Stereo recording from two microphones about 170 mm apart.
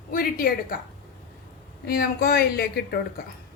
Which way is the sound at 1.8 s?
65° left (ahead or behind).